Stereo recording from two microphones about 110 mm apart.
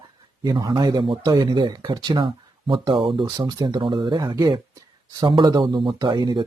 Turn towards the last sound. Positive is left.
turn(degrees=-45)  # may be behind; listen again after turning